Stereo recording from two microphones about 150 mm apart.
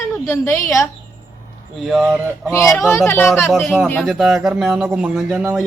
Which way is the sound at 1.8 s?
Centre (ahead or behind).